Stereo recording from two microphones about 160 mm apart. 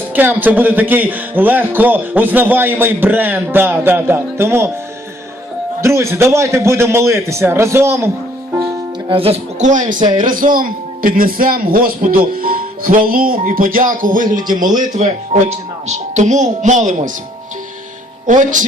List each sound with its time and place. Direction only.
0.2 s a man's voice: 10° right (ahead or behind)
5.8 s a man's voice: 15° right (ahead or behind)
9.0 s a man's voice: 35° right (ahead or behind); by 14.5 s 60° right (ahead or behind)
15.3 s speech: 40° right (ahead or behind)
18.3 s speech: 55° right (ahead or behind)